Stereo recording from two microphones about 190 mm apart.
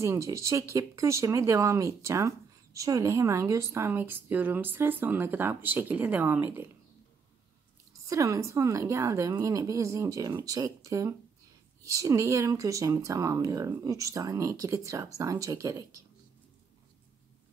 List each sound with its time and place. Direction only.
0.0 s speech: 15° right (ahead or behind)
8.1 s speech: 15° right (ahead or behind)